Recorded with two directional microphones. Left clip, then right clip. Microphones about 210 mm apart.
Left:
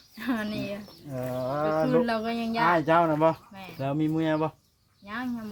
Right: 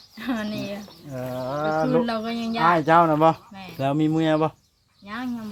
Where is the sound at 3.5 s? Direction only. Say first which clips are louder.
Right 3 dB; centre (ahead or behind).